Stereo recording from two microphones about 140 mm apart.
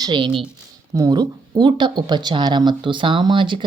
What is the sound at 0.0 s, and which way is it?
Speech, 35° right (ahead or behind).